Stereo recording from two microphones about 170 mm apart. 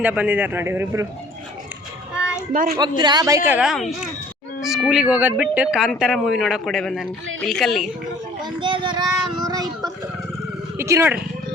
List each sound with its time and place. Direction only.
0.0 s speech: 10° right (ahead or behind)
2.5 s a woman's voice: 55° right (ahead or behind)
2.7 s a man's voice: 25° right (ahead or behind); by 7.9 s centre (ahead or behind)
8.4 s speech: 25° right (ahead or behind)